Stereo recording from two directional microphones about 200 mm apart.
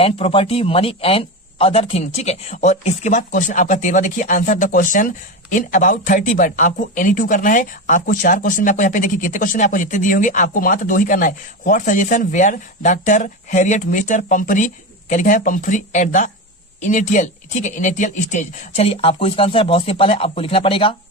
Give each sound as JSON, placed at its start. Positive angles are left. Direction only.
{"t": 0.0, "sound": "speech", "side_deg": 30}